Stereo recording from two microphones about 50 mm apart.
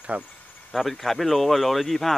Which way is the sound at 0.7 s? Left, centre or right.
Centre.